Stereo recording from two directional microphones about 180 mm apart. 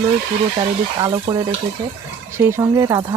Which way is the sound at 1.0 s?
20° right (ahead or behind).